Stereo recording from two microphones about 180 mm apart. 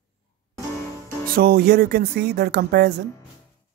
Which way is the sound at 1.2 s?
60° right (ahead or behind).